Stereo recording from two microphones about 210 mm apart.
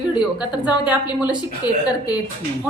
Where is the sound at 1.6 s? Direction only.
20° left (ahead or behind).